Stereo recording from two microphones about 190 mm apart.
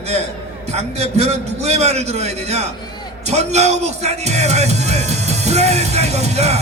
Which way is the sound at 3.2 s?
35° right (ahead or behind).